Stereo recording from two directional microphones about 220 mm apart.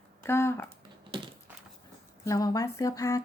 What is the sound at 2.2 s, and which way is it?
Speech, 15° left (ahead or behind).